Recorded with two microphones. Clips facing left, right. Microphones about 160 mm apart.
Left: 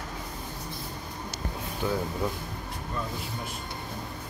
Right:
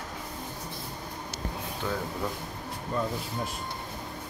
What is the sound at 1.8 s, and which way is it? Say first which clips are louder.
Speech: left 4 dB; 10° left (ahead or behind).